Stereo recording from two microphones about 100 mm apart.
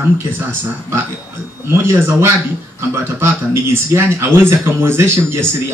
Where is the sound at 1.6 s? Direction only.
25° right (ahead or behind).